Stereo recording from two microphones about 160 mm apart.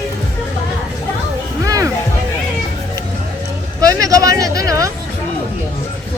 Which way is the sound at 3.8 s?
20° right (ahead or behind).